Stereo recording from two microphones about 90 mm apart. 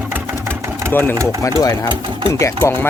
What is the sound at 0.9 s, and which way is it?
Speech, 25° left (ahead or behind).